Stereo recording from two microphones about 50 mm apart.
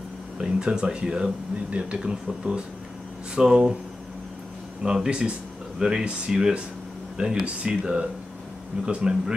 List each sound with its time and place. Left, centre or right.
0.4 s speech: centre
4.8 s speech: centre